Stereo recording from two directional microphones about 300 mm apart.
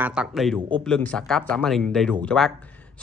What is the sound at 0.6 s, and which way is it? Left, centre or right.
Speech, centre.